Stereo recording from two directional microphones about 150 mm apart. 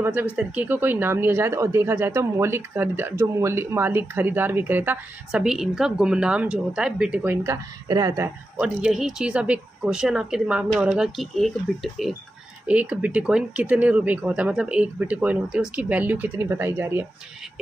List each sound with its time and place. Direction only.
0.0 s speech: 10° right (ahead or behind)
7.4 s speech: 25° right (ahead or behind)
8.5 s speech: 5° right (ahead or behind)
12.6 s speech: 10° right (ahead or behind)